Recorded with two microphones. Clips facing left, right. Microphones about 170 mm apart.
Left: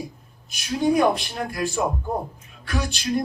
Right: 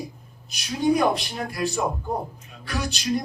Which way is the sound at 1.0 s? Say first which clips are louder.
Left 2 dB; 50° left (ahead or behind).